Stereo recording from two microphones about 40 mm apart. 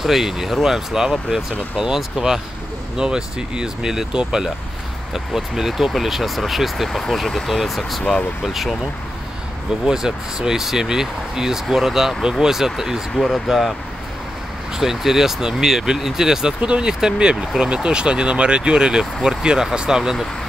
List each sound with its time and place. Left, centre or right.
0.0 s speech: centre
5.1 s speech: centre
6.9 s speech: centre
9.8 s speech: centre
13.1 s speech: centre
14.8 s speech: centre
16.6 s speech: right